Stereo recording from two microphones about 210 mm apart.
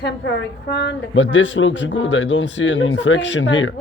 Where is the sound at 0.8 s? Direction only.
60° left (ahead or behind).